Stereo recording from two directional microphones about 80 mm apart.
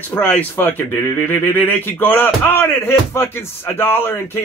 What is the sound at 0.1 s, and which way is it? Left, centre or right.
Speech, left.